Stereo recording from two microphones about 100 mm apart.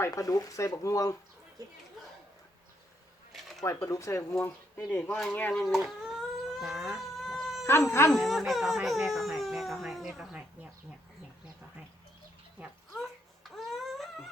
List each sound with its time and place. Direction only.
0.1 s speech: 35° left (ahead or behind)
1.6 s speech: 35° right (ahead or behind)
3.6 s speech: 35° left (ahead or behind)
4.8 s speech: 10° left (ahead or behind)
5.5 s baby cry: centre (ahead or behind)
7.7 s speech: 25° left (ahead or behind)
8.1 s speech: centre (ahead or behind)
12.9 s babbling: centre (ahead or behind)